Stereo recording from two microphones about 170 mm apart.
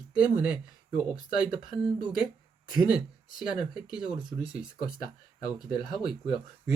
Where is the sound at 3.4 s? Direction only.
5° right (ahead or behind).